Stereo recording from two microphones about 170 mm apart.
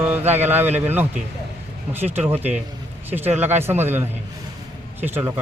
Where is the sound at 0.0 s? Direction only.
10° right (ahead or behind).